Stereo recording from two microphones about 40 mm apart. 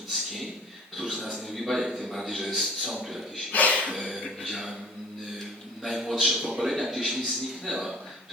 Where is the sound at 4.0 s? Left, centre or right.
Centre.